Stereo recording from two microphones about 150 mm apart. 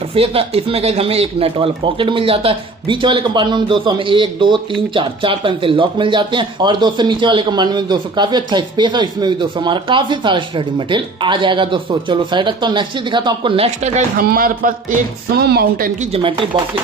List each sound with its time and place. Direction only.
0.1 s speech: 40° right (ahead or behind)
14.1 s speech: 70° right (ahead or behind); by 15.9 s 90° right
16.2 s speech: 35° right (ahead or behind)